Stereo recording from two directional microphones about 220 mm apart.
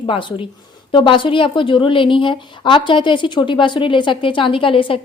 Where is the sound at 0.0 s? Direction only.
20° left (ahead or behind).